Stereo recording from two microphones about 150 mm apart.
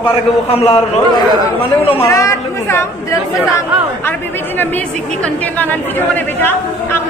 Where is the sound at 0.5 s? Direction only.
45° left (ahead or behind).